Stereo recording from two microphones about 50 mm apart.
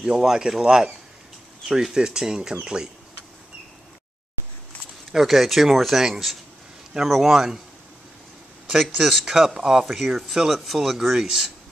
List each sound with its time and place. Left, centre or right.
0.0 s speech: centre
5.1 s speech: centre
8.6 s a sound: centre
8.9 s speech: centre